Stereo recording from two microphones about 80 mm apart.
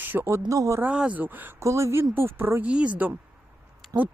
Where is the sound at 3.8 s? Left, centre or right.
Centre.